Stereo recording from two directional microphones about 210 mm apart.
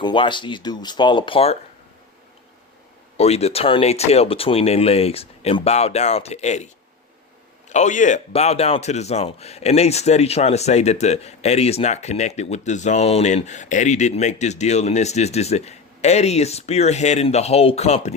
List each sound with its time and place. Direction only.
0.0 s speech: 25° left (ahead or behind)
3.2 s speech: 30° left (ahead or behind)
7.7 s speech: 35° left (ahead or behind)